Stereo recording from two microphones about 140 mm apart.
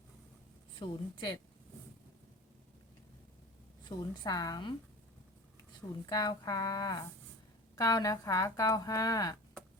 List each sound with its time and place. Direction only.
0.8 s a woman's voice: 35° left (ahead or behind)
3.8 s a woman's voice: 30° left (ahead or behind)
6.1 s speech: 30° left (ahead or behind)